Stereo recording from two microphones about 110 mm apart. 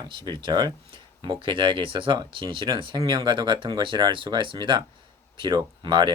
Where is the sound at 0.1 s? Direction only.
45° right (ahead or behind).